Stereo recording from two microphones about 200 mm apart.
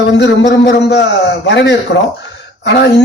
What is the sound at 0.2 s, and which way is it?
A man's voice, 60° left (ahead or behind).